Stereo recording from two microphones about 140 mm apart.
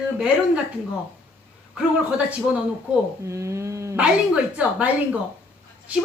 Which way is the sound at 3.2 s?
20° right (ahead or behind).